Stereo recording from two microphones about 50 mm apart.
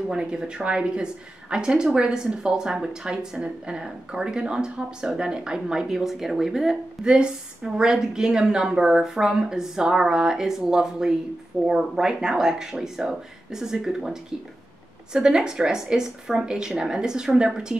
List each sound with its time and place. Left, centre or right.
0.1 s a woman's voice: centre
7.1 s a woman's voice: centre
15.1 s a woman's voice: centre